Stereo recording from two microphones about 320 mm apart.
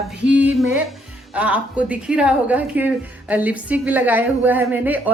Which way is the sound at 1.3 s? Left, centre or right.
Centre.